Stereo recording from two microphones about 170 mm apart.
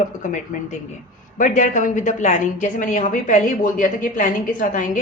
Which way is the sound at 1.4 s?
50° left (ahead or behind).